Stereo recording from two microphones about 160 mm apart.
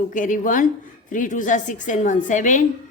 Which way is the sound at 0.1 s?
50° left (ahead or behind).